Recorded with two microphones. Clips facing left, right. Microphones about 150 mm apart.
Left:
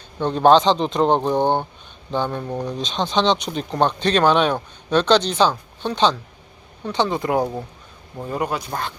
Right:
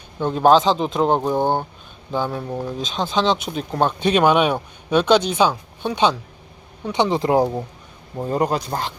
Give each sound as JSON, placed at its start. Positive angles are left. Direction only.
{"t": 0.2, "sound": "speech", "side_deg": -5}
{"t": 8.3, "sound": "speech", "side_deg": -35}